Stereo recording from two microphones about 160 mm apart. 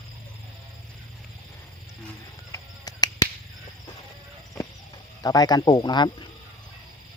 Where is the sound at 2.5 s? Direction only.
20° left (ahead or behind).